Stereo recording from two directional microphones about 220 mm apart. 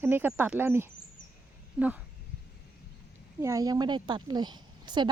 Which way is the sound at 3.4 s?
15° right (ahead or behind).